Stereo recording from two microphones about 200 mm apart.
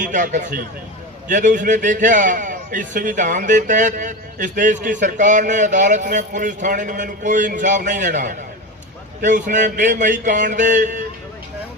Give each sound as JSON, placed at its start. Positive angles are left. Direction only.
{"t": 0.0, "sound": "a man's voice", "side_deg": -40}